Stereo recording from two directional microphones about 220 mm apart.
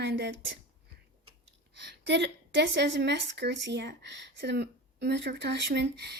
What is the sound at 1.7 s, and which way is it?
A woman's voice, 50° right (ahead or behind).